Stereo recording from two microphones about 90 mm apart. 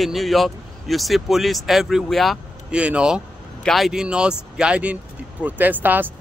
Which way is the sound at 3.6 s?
Centre (ahead or behind).